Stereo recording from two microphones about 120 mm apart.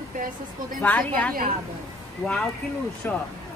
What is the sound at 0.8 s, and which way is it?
Speech, 15° left (ahead or behind).